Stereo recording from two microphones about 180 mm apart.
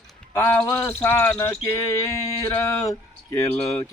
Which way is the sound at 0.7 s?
15° left (ahead or behind).